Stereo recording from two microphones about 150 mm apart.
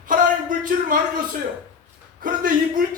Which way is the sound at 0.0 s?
65° right (ahead or behind).